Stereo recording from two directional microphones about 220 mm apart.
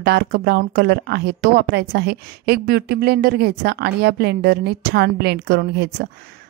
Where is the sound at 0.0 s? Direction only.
50° right (ahead or behind).